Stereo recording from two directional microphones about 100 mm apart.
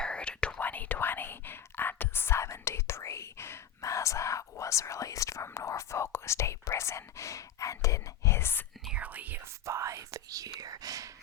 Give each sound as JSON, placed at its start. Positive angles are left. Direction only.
{"t": 0.0, "sound": "whispering", "side_deg": 10}
{"t": 9.0, "sound": "whispering", "side_deg": -15}
{"t": 9.6, "sound": "whispering", "side_deg": -30}